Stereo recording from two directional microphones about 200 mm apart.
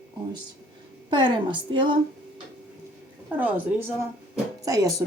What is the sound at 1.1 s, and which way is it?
Speech, 25° right (ahead or behind).